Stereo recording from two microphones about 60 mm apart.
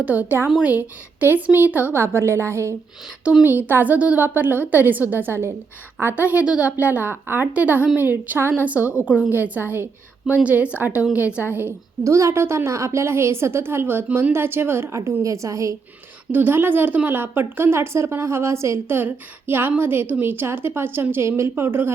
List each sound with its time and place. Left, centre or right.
0.0 s a woman's voice: right
2.0 s a woman's voice: right
3.3 s a woman's voice: right
9.3 s a woman's voice: right
12.0 s a woman's voice: right
14.9 s a woman's voice: right
16.3 s speech: right
18.9 s speech: right
21.5 s speech: right